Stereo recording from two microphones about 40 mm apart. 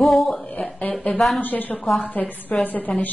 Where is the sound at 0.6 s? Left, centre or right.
Left.